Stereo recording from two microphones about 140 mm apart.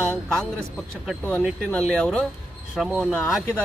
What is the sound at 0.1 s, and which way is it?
Speech, 5° left (ahead or behind).